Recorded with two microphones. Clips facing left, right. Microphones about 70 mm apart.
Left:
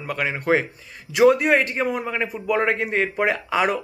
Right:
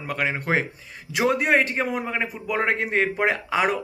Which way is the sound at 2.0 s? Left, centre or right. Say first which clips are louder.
Left 1 dB; right.